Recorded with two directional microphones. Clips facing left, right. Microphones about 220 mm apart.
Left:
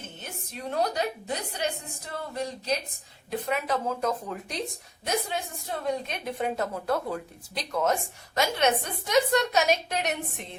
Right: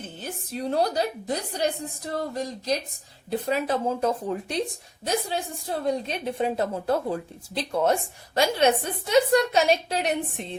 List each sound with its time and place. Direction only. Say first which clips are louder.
0.2 s a woman's voice: right 8 dB; 35° right (ahead or behind)
5.8 s a woman's voice: right 3 dB; 30° right (ahead or behind)